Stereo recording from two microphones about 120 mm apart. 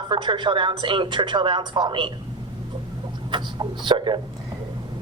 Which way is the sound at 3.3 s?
40° right (ahead or behind).